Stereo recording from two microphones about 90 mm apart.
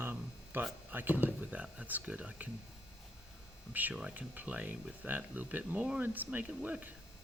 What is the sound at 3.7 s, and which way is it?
Speech, 15° right (ahead or behind).